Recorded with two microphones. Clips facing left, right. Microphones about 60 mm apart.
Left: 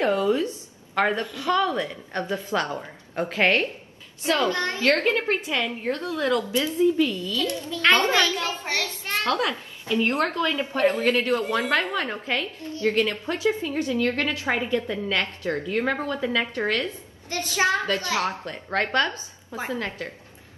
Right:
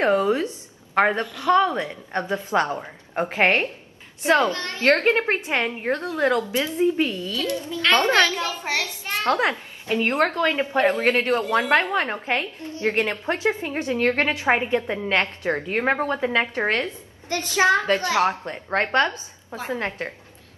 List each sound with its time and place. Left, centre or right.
0.0 s a woman's voice: right
4.5 s a woman's voice: left
4.7 s a woman's voice: right
8.6 s a child's voice: centre
9.2 s a woman's voice: right